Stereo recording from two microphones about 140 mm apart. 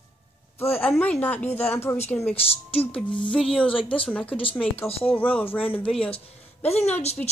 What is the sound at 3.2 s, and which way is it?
Speech, 5° left (ahead or behind).